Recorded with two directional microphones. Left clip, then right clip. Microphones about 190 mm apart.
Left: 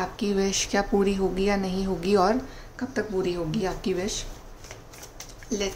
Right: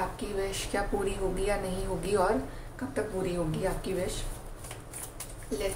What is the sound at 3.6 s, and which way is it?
Speech, 50° left (ahead or behind).